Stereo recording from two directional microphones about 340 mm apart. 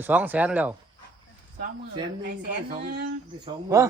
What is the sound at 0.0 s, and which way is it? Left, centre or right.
Speech, centre.